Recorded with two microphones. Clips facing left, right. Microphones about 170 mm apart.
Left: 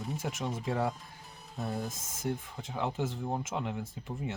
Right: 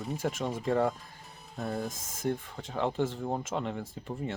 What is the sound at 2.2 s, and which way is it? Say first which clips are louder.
Speech: right 3 dB; 5° left (ahead or behind).